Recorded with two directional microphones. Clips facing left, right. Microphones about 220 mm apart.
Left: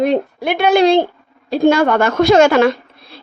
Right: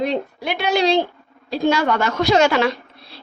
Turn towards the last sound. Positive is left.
turn(degrees=50)  # may be behind; listen again after turning